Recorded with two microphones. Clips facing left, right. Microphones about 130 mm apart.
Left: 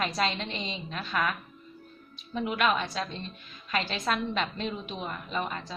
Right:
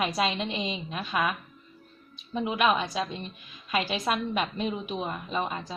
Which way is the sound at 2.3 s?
15° right (ahead or behind).